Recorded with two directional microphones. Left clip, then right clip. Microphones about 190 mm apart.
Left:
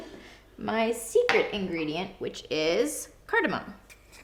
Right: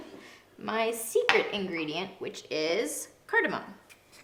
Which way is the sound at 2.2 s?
55° left (ahead or behind).